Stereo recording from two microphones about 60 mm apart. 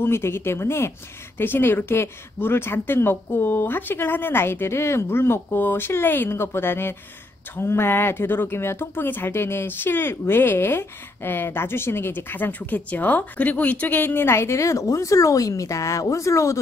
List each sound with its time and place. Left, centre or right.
0.0 s speech: left